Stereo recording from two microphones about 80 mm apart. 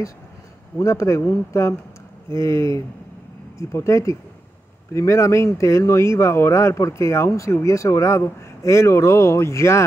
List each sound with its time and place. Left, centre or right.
0.7 s speech: left